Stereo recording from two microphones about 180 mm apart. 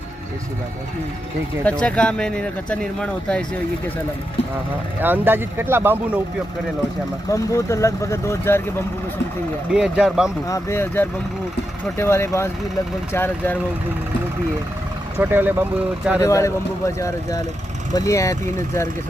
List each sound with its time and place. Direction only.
1.6 s speech: 5° left (ahead or behind)
5.0 s speech: 10° right (ahead or behind)
7.3 s speech: 15° left (ahead or behind)
9.7 s speech: centre (ahead or behind)
10.4 s speech: 15° left (ahead or behind)
15.2 s speech: 10° right (ahead or behind)
16.2 s speech: 15° left (ahead or behind)